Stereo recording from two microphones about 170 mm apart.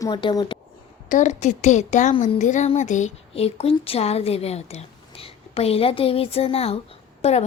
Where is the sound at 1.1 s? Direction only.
45° left (ahead or behind).